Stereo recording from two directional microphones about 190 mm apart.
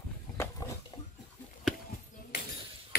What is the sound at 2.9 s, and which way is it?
Ping, 55° left (ahead or behind).